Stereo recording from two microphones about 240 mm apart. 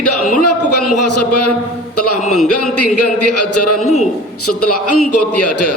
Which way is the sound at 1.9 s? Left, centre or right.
Left.